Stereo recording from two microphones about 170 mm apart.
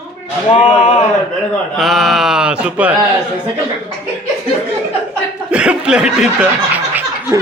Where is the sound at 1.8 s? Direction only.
Centre (ahead or behind).